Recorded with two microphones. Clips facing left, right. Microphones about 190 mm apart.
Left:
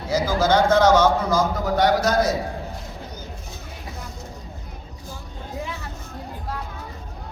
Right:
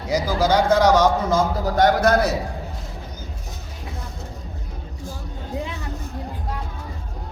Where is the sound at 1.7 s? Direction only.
50° right (ahead or behind).